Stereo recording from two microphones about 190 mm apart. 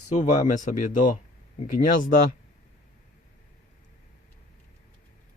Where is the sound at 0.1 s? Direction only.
40° left (ahead or behind).